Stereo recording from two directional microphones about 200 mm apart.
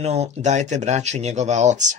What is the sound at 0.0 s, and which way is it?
Speech, 35° right (ahead or behind).